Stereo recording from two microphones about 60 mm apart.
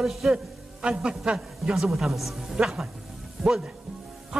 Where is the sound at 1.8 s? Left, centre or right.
Centre.